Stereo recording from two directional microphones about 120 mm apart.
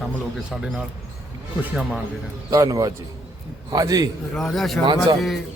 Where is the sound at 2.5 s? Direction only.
30° right (ahead or behind).